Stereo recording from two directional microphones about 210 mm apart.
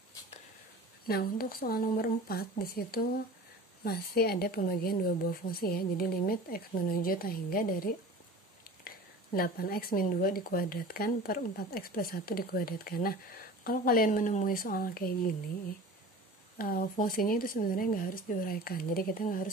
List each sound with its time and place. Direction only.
1.0 s a woman's voice: 45° left (ahead or behind)
16.5 s a woman's voice: 45° left (ahead or behind)